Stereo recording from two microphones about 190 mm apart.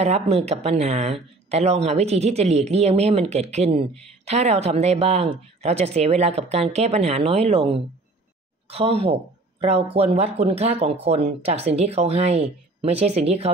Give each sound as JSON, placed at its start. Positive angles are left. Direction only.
{"t": 0.0, "sound": "a woman's voice", "side_deg": -35}